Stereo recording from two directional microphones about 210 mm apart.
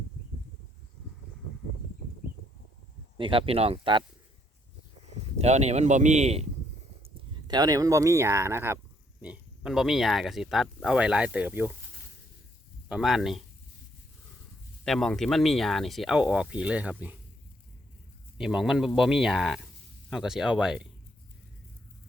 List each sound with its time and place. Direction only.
3.2 s speech: 25° right (ahead or behind)
5.0 s a man's voice: 30° right (ahead or behind)
7.0 s speech: 20° right (ahead or behind)
12.9 s speech: centre (ahead or behind)
14.8 s speech: centre (ahead or behind)
18.3 s speech: centre (ahead or behind)